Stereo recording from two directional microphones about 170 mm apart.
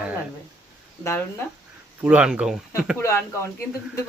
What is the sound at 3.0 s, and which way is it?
Speech, 15° left (ahead or behind).